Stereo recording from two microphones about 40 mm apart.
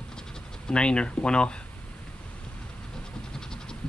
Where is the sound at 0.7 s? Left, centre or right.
Left.